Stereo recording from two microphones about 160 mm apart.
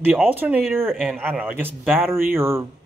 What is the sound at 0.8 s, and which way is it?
Speech, 5° left (ahead or behind).